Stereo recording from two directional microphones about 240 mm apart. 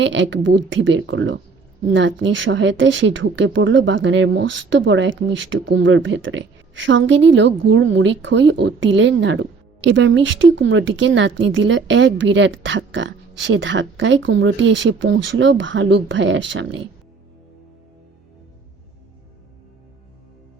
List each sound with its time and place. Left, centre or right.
0.0 s speech: right